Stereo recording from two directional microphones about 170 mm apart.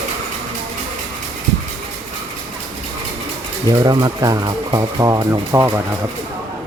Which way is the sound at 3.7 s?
20° right (ahead or behind).